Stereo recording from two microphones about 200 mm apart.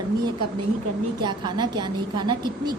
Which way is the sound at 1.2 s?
20° right (ahead or behind).